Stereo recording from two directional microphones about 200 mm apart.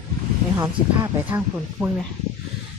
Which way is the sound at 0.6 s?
10° right (ahead or behind).